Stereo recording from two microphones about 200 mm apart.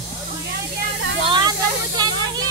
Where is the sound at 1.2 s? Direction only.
25° right (ahead or behind).